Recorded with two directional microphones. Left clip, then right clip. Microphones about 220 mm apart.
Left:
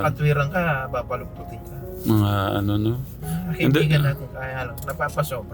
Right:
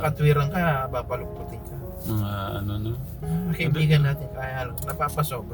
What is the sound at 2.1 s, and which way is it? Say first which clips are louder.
Speech: left 9 dB; 55° left (ahead or behind).